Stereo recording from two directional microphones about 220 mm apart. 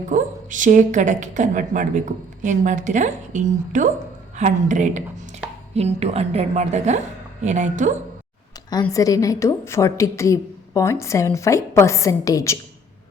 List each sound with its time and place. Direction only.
0.1 s a woman's voice: 35° right (ahead or behind)
8.7 s a woman's voice: 15° left (ahead or behind)